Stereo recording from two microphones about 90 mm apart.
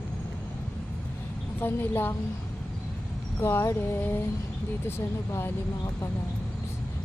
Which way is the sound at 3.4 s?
35° left (ahead or behind).